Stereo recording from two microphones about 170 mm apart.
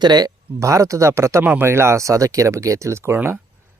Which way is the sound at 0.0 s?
25° right (ahead or behind).